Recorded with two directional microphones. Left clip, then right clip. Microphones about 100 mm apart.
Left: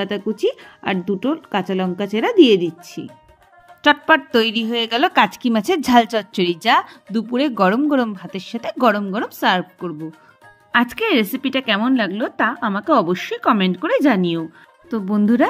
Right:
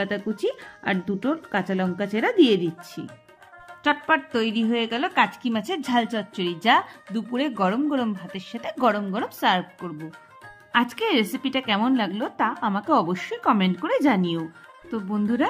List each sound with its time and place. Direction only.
0.0 s speech: 35° left (ahead or behind)
3.8 s a woman's voice: 85° left; by 6.9 s 70° left (ahead or behind)
7.1 s a woman's voice: 45° left (ahead or behind)
14.9 s speech: 50° left (ahead or behind)